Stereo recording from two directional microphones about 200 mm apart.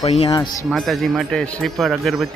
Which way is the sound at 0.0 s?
30° left (ahead or behind).